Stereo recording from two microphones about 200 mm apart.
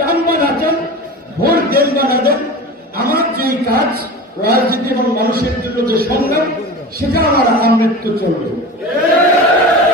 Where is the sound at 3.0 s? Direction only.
50° right (ahead or behind).